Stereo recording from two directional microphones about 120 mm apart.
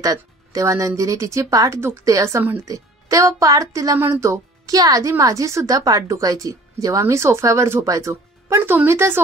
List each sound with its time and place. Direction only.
0.0 s speech: 30° right (ahead or behind)